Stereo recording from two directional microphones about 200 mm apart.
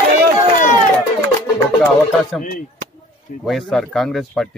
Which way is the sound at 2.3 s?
Centre (ahead or behind).